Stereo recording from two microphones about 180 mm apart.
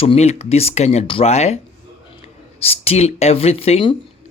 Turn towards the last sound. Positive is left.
turn(degrees=30)  # may be behind; listen again after turning